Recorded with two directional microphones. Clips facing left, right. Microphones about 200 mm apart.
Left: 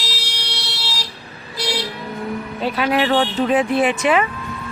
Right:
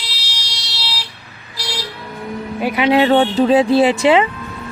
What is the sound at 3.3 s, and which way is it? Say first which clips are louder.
Speech: right 5 dB; 30° right (ahead or behind).